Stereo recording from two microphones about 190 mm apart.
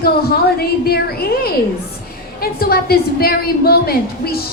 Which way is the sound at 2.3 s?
50° left (ahead or behind).